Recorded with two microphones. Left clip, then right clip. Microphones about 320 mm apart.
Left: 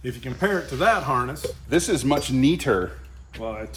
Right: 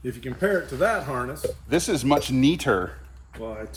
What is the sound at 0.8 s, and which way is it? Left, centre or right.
Speech, centre.